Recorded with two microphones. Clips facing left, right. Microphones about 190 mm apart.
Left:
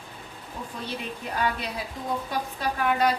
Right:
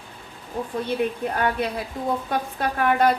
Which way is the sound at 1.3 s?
55° right (ahead or behind).